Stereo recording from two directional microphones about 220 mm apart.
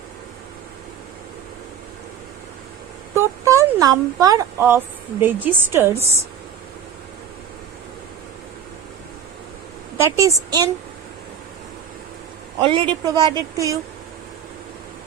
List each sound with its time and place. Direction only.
3.2 s a woman's voice: 15° right (ahead or behind)
10.0 s a woman's voice: 15° right (ahead or behind)
12.6 s speech: 25° right (ahead or behind)